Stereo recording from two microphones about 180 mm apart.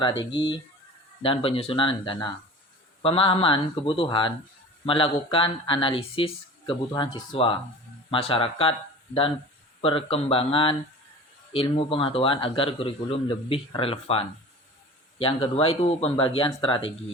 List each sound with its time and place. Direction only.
0.0 s a man's voice: 25° left (ahead or behind)
9.8 s a man's voice: 30° left (ahead or behind)